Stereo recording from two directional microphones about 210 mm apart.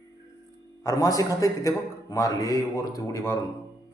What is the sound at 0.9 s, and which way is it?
A man's voice, 15° left (ahead or behind).